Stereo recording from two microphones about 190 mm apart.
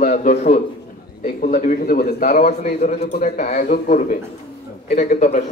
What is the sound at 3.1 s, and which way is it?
A man's voice, 50° left (ahead or behind).